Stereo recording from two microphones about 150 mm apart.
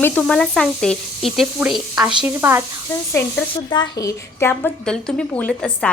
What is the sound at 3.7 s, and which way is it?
Speech, 25° left (ahead or behind).